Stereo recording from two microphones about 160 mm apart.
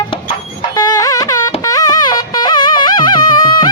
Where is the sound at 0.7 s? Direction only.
20° left (ahead or behind).